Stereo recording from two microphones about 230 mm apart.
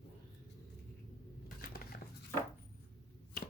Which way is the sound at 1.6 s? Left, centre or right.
Left.